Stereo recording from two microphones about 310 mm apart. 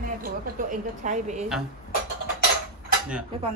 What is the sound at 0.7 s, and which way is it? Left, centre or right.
Speech, right.